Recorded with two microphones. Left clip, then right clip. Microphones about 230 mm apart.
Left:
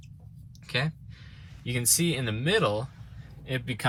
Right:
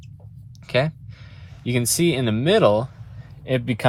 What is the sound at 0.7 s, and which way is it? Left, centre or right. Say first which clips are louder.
Speech: right 9 dB; right.